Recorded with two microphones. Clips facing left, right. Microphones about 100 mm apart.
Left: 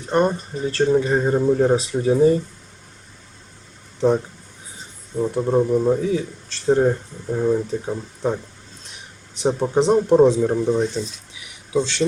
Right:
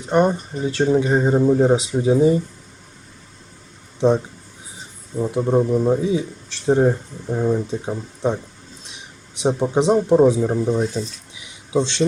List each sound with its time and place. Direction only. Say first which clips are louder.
0.1 s speech: right 2 dB; 15° right (ahead or behind)
5.1 s speech: even; centre (ahead or behind)
6.0 s speech: right 1 dB; 15° right (ahead or behind)
7.7 s speech: even; 20° right (ahead or behind)
9.4 s speech: even; 15° right (ahead or behind)
10.1 s speech: even; centre (ahead or behind)
11.3 s a sound: right 1 dB; 20° right (ahead or behind)